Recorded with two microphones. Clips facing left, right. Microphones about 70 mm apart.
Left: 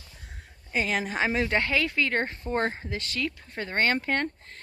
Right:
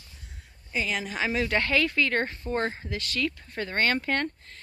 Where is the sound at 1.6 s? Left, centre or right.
Centre.